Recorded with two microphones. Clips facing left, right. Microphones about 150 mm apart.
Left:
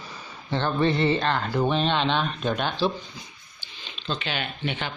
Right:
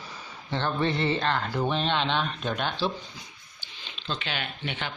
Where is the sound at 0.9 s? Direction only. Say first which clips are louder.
Left 6 dB; 60° left (ahead or behind).